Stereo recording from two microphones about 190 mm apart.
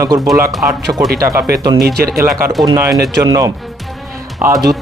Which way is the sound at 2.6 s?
20° right (ahead or behind).